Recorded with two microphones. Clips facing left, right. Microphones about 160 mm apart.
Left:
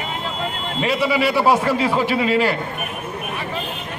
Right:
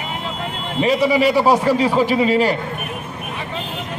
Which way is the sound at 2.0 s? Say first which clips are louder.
Right 2 dB; 40° right (ahead or behind).